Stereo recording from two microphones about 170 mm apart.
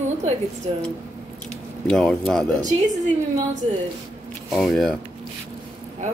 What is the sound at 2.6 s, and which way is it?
Speech, 45° right (ahead or behind).